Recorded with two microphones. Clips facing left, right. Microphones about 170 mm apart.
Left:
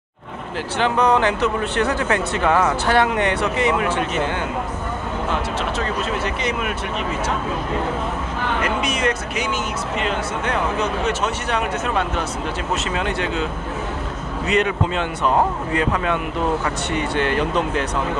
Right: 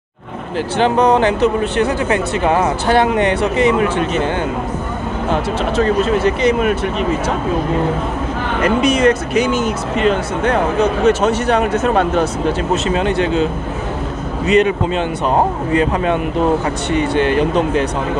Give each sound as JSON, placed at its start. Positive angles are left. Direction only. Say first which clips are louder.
{"t": 0.7, "sound": "speech", "louder": "right 5 dB", "side_deg": -25}
{"t": 5.3, "sound": "speech", "louder": "right 8 dB", "side_deg": -35}
{"t": 8.6, "sound": "speech", "louder": "right 12 dB", "side_deg": -35}
{"t": 12.8, "sound": "speech", "louder": "right 7 dB", "side_deg": -30}